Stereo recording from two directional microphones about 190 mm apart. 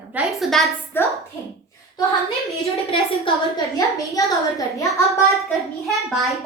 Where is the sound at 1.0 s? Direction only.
10° left (ahead or behind).